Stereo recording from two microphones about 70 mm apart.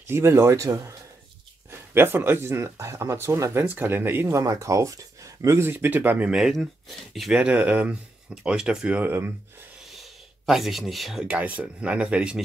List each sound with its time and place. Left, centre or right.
0.0 s speech: right
1.7 s speech: right
3.8 s speech: right
4.4 s speech: right
5.7 s speech: right
6.3 s speech: centre
7.3 s speech: centre
9.9 s a sound: centre
11.2 s speech: centre